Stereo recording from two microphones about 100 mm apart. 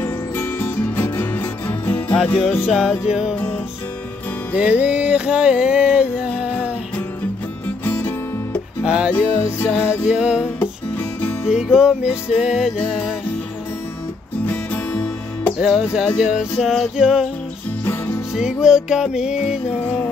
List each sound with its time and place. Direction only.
0.0 s music: 20° left (ahead or behind)
2.3 s music: 5° right (ahead or behind)
4.6 s music: 10° right (ahead or behind)
7.8 s music: 20° left (ahead or behind)
8.8 s music: 10° right (ahead or behind)
9.7 s music: 20° left (ahead or behind)
10.0 s music: 10° right (ahead or behind)
10.4 s music: 20° left (ahead or behind)
11.4 s music: 10° right (ahead or behind)
14.4 s music: 20° left (ahead or behind)
15.6 s music: 5° right (ahead or behind)
18.3 s music: 5° right (ahead or behind)
19.7 s music: 10° left (ahead or behind)